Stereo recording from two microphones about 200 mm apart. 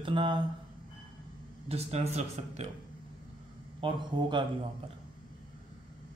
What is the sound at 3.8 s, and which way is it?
Speech, 25° right (ahead or behind).